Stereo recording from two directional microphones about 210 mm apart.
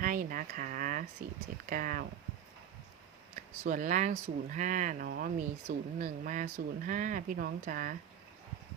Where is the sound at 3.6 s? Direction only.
40° right (ahead or behind).